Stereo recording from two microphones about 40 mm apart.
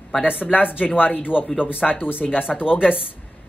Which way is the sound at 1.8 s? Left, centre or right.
Left.